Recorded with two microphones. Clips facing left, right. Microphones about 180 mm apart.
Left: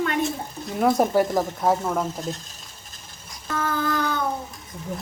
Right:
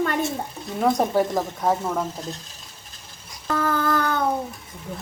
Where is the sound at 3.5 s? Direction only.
45° right (ahead or behind).